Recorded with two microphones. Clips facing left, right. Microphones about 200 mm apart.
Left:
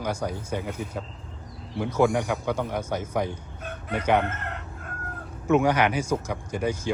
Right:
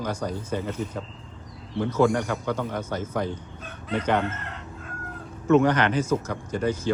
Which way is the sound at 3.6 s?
60° left (ahead or behind).